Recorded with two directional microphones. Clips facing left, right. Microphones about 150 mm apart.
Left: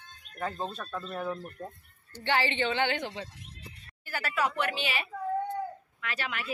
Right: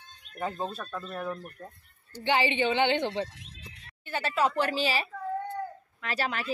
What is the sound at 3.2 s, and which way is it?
Neigh, 90° right.